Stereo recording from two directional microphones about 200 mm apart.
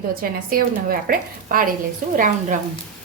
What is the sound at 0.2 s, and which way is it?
A woman's voice, 45° right (ahead or behind).